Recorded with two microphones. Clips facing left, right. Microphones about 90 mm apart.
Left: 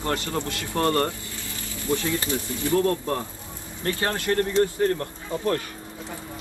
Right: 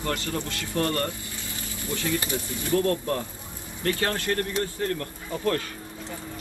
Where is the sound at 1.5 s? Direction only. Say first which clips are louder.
Left 1 dB; 20° right (ahead or behind).